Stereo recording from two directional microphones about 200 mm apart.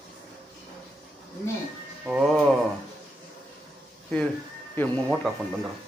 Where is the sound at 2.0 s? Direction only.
5° right (ahead or behind).